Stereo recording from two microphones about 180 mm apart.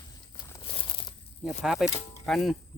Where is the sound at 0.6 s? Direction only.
30° left (ahead or behind).